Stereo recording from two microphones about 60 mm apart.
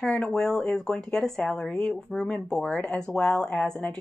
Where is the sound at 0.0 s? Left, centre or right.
Centre.